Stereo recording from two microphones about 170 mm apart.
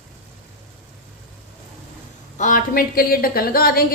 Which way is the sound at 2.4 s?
50° left (ahead or behind).